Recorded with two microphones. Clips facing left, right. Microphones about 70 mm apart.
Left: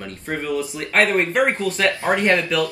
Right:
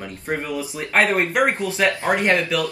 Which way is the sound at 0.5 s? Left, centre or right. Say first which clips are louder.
Left 1 dB; centre.